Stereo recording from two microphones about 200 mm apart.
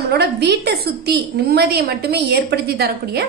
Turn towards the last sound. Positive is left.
turn(degrees=-50)  # may be behind; listen again after turning